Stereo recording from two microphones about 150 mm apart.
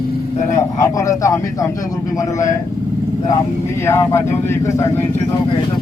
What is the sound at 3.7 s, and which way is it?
Speech, 15° left (ahead or behind).